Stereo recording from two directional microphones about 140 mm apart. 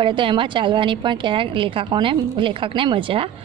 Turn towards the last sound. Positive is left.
turn(degrees=-40)  # may be behind; listen again after turning